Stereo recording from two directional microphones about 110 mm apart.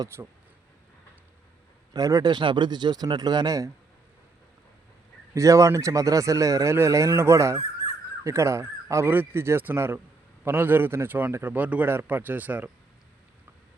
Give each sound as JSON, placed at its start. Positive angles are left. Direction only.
{"t": 0.0, "sound": "speech", "side_deg": -25}
{"t": 1.9, "sound": "speech", "side_deg": -35}
{"t": 5.3, "sound": "a man's voice", "side_deg": -30}